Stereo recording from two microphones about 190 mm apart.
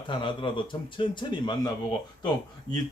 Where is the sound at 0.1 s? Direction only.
25° left (ahead or behind).